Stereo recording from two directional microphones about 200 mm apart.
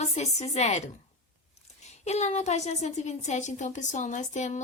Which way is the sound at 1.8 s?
35° left (ahead or behind).